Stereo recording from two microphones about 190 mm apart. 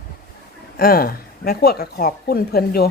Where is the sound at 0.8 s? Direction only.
50° left (ahead or behind).